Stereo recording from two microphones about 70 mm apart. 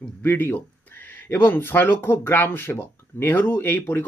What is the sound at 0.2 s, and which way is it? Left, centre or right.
Speech, left.